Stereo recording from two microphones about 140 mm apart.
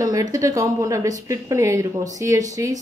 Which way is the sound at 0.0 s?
25° right (ahead or behind).